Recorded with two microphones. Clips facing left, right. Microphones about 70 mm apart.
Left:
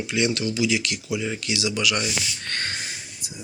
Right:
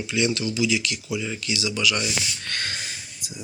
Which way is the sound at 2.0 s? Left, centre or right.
Left.